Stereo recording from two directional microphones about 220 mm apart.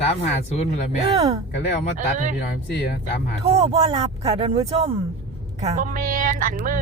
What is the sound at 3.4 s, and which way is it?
A woman's voice, 25° right (ahead or behind).